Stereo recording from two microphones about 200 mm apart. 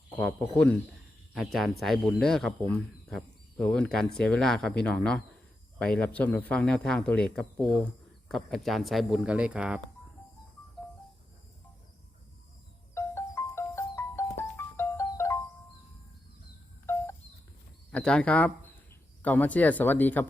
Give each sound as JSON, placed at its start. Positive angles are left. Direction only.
{"t": 0.2, "sound": "speech", "side_deg": 5}
{"t": 12.9, "sound": "music", "side_deg": 15}
{"t": 16.8, "sound": "a sound", "side_deg": 15}
{"t": 17.9, "sound": "speech", "side_deg": 5}